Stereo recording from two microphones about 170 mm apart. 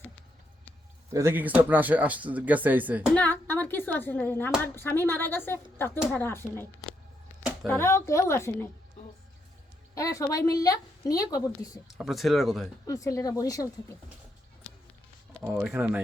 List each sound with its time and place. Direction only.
1.1 s speech: 15° right (ahead or behind)
3.2 s speech: 10° left (ahead or behind)
7.7 s speech: 15° left (ahead or behind)
9.9 s a woman's voice: 20° left (ahead or behind)
11.9 s speech: centre (ahead or behind)
12.9 s a woman's voice: 20° left (ahead or behind)
15.4 s speech: 10° right (ahead or behind)